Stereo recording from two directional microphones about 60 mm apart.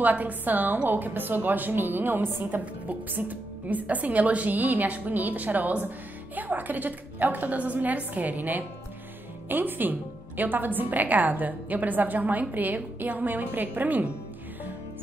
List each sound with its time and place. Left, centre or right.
0.0 s a woman's voice: right